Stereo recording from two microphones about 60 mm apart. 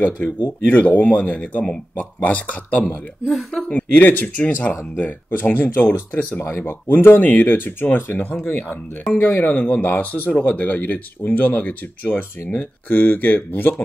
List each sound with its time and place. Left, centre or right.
0.0 s speech: left
3.3 s a woman's voice: centre
3.6 s speech: left
12.9 s speech: left